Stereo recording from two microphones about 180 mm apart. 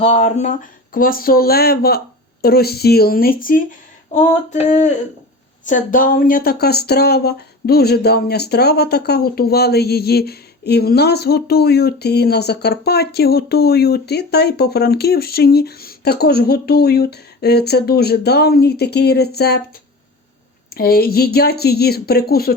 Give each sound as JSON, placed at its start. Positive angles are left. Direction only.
{"t": 0.0, "sound": "speech", "side_deg": 35}
{"t": 4.1, "sound": "a sound", "side_deg": 40}
{"t": 5.6, "sound": "speech", "side_deg": 45}
{"t": 20.7, "sound": "speech", "side_deg": 55}